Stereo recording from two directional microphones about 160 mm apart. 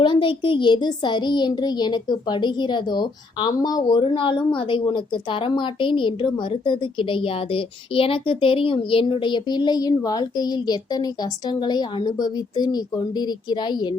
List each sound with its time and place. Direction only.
0.0 s a child's voice: 30° left (ahead or behind)